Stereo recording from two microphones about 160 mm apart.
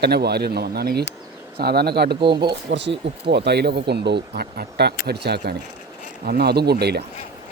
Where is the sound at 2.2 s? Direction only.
30° right (ahead or behind).